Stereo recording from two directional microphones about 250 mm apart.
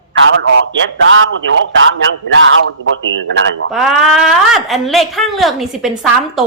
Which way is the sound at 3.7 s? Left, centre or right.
Centre.